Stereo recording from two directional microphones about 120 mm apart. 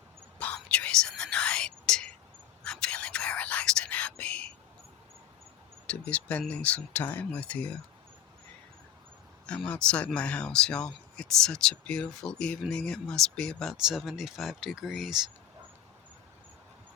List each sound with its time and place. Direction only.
0.3 s whispering: 10° left (ahead or behind)
5.9 s speech: 10° left (ahead or behind)
9.5 s speech: 10° left (ahead or behind)